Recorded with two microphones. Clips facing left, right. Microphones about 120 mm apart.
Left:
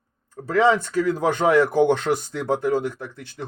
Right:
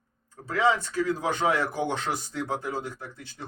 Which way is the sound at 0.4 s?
60° left (ahead or behind).